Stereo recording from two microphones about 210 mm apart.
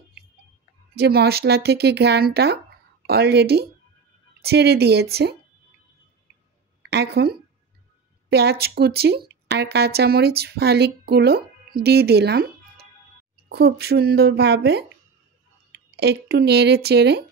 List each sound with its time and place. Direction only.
0.9 s speech: 50° right (ahead or behind)
6.9 s speech: 50° right (ahead or behind)